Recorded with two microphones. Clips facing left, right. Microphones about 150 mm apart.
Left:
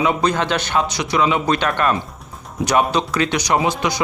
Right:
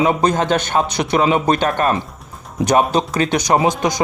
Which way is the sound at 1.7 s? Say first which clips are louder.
Right 2 dB; 35° right (ahead or behind).